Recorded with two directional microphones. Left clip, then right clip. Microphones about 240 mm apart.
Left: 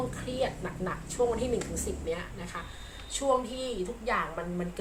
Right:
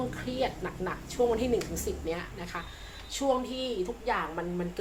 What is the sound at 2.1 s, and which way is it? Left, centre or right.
A woman's voice, right.